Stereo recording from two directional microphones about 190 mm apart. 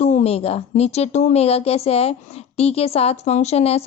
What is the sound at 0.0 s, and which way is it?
A woman's voice, 35° left (ahead or behind).